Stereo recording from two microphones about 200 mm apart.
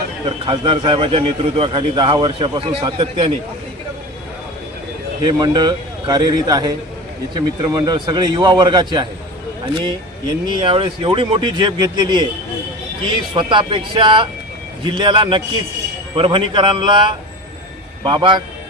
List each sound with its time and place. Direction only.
0.3 s a man's voice: 25° right (ahead or behind)
5.2 s a man's voice: 20° right (ahead or behind)
10.6 s a man's voice: 25° right (ahead or behind)